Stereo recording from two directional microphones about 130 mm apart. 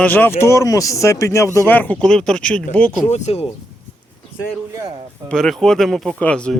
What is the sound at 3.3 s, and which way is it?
Speech, 50° left (ahead or behind).